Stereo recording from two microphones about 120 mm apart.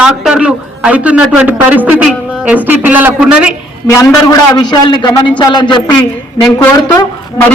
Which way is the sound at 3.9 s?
30° left (ahead or behind).